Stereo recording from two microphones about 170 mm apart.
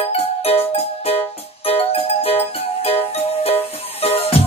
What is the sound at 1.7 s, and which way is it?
Music, 35° left (ahead or behind).